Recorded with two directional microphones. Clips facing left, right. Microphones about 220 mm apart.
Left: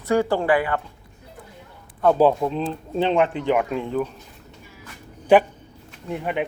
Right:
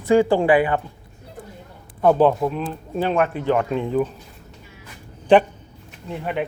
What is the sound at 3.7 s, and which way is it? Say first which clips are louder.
Speech: right 3 dB; centre (ahead or behind).